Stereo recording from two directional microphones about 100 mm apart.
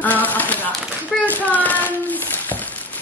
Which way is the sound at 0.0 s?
15° left (ahead or behind).